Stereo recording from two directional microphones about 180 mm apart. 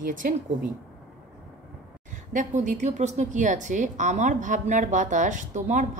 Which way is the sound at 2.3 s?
40° right (ahead or behind).